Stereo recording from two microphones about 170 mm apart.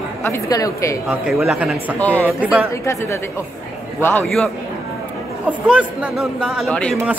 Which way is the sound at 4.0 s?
10° left (ahead or behind).